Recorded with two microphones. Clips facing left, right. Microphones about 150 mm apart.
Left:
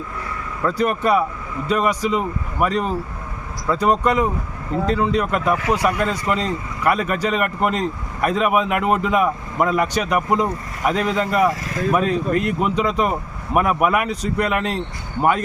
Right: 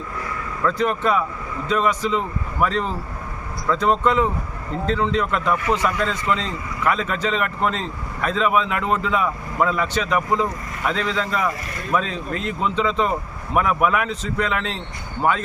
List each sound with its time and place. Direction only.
0.6 s speech: 10° left (ahead or behind)
11.6 s speech: 90° left
11.9 s speech: 10° left (ahead or behind)
12.3 s speech: 60° left (ahead or behind)
12.5 s speech: 10° left (ahead or behind)